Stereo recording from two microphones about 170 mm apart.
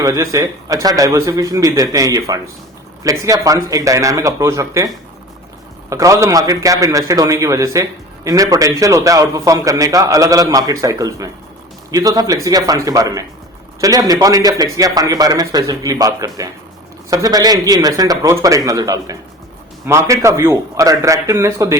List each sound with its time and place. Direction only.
0.0 s a man's voice: 20° right (ahead or behind)
5.9 s a man's voice: 20° right (ahead or behind)